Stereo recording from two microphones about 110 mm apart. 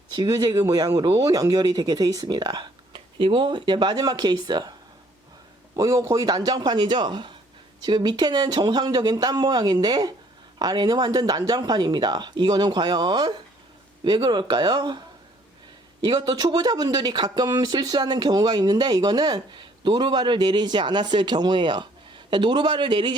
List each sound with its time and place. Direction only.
0.1 s speech: 40° right (ahead or behind)
2.9 s speech: 50° right (ahead or behind)
5.7 s speech: 30° right (ahead or behind)
16.0 s speech: 40° right (ahead or behind)